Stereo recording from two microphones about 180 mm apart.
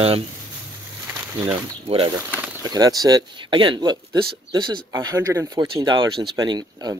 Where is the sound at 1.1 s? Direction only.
15° right (ahead or behind).